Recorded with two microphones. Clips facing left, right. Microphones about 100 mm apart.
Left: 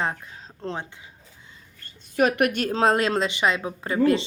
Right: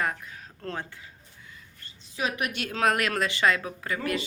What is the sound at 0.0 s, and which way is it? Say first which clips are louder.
Speech: left 2 dB; 25° left (ahead or behind).